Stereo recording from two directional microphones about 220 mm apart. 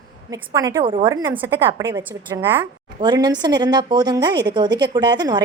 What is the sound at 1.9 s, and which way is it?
A woman's voice, 15° right (ahead or behind).